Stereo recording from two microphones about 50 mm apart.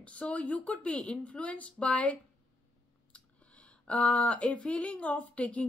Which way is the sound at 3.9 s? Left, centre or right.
Left.